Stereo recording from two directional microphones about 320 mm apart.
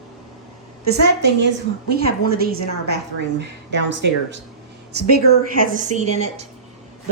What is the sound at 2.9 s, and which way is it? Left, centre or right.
Speech, right.